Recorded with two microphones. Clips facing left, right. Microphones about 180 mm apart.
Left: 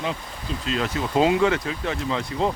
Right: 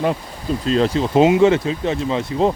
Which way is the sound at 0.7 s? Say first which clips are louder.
Right 8 dB; 30° right (ahead or behind).